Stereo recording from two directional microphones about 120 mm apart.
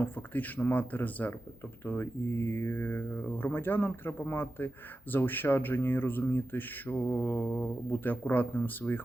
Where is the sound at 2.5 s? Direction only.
20° left (ahead or behind).